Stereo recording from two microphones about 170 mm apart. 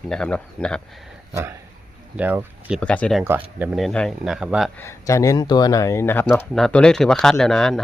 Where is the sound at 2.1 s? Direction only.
10° right (ahead or behind).